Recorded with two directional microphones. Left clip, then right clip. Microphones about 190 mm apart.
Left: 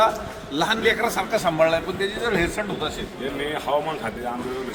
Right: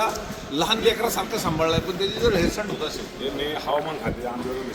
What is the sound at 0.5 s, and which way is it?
A man's voice, 15° left (ahead or behind).